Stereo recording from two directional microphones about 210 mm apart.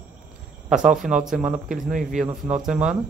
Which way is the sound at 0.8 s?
Centre (ahead or behind).